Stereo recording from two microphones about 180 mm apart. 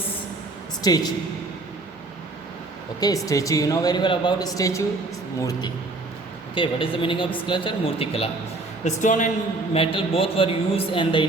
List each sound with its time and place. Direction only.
0.8 s speech: 20° left (ahead or behind)
3.0 s speech: 20° left (ahead or behind)
8.8 s speech: 45° left (ahead or behind)
9.7 s speech: 30° left (ahead or behind)